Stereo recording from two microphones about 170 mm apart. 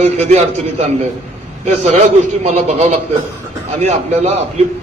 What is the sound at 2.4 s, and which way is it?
A man's voice, 40° right (ahead or behind).